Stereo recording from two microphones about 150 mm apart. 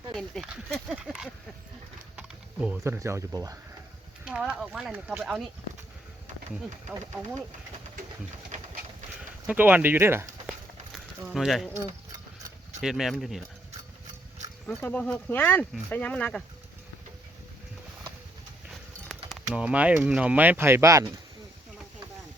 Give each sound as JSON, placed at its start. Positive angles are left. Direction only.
{"t": 0.1, "sound": "a sound", "side_deg": 5}
{"t": 0.4, "sound": "speech", "side_deg": -5}
{"t": 2.1, "sound": "typing", "side_deg": -5}
{"t": 2.8, "sound": "speech", "side_deg": -20}
{"t": 4.3, "sound": "speech", "side_deg": -5}
{"t": 9.5, "sound": "speech", "side_deg": -10}
{"t": 10.9, "sound": "speech", "side_deg": 0}
{"t": 12.8, "sound": "speech", "side_deg": -5}
{"t": 14.7, "sound": "speech", "side_deg": 10}
{"t": 18.7, "sound": "speech", "side_deg": 0}